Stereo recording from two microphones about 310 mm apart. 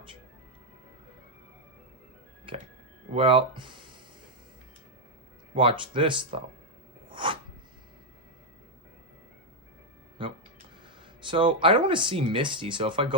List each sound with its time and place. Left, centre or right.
3.1 s speech: centre
5.5 s speech: centre
7.1 s a sound: centre
11.3 s speech: centre